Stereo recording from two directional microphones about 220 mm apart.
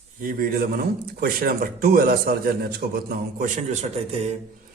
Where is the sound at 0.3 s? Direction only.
40° right (ahead or behind).